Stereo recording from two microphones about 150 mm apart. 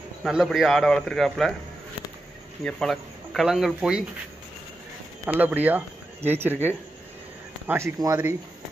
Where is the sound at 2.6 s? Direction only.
Centre (ahead or behind).